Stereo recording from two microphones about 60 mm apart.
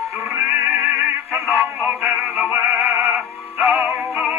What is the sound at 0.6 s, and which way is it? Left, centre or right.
Music, right.